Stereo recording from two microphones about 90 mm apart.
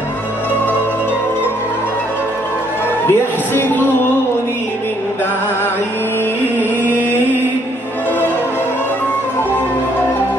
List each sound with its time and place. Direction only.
3.1 s speech: 25° left (ahead or behind)